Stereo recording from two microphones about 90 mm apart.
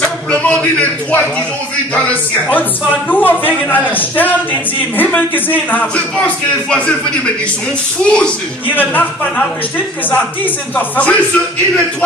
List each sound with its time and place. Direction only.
0.3 s speech: 15° left (ahead or behind)